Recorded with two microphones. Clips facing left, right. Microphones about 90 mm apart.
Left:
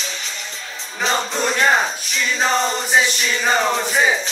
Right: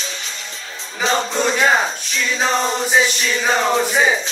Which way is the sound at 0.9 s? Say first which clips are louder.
Right 2 dB; centre (ahead or behind).